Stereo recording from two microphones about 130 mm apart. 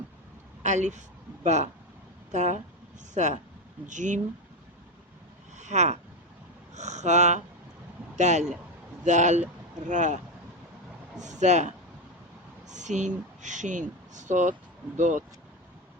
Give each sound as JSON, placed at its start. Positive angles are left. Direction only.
{"t": 0.6, "sound": "speech", "side_deg": -65}
{"t": 5.5, "sound": "speech", "side_deg": -65}
{"t": 11.2, "sound": "speech", "side_deg": -65}